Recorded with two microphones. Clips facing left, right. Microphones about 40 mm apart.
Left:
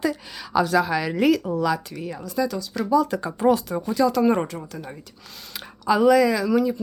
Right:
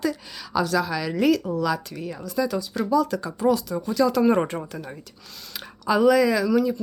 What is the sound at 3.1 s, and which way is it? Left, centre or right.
Speech, left.